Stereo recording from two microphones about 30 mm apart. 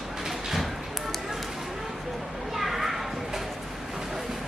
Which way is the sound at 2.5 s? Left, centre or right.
Centre.